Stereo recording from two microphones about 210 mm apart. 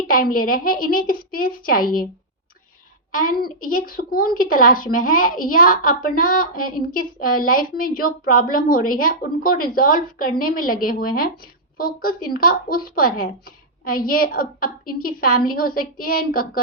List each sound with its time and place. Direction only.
0.1 s speech: 40° left (ahead or behind)
3.2 s speech: 45° left (ahead or behind)